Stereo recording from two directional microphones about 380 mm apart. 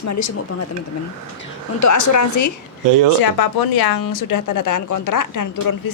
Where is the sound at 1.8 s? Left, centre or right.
Left.